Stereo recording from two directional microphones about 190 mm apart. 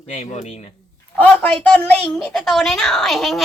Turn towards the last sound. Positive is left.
turn(degrees=0)  # may be behind; listen again after turning